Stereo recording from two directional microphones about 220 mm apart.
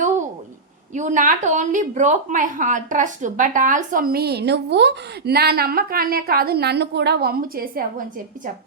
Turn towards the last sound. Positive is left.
turn(degrees=-40)  # may be behind; listen again after turning